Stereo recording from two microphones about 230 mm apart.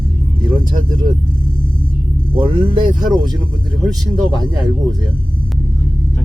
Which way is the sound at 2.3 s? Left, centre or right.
Right.